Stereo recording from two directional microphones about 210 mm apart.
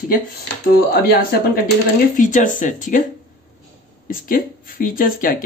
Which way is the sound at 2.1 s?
35° left (ahead or behind).